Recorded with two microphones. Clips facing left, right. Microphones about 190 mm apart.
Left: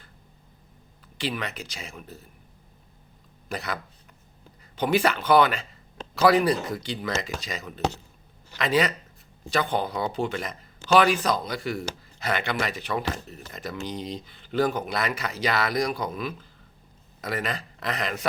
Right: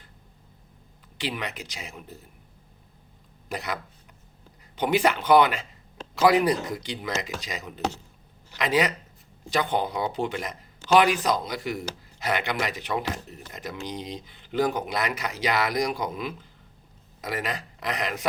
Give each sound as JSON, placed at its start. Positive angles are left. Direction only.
{"t": 1.2, "sound": "speech", "side_deg": -15}
{"t": 3.5, "sound": "speech", "side_deg": -15}
{"t": 4.8, "sound": "a man's voice", "side_deg": -20}